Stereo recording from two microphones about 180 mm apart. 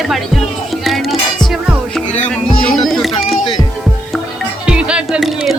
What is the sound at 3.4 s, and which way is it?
Music, 25° left (ahead or behind).